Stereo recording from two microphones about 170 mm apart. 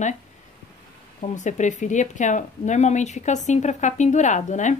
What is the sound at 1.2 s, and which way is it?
Speech, 45° left (ahead or behind).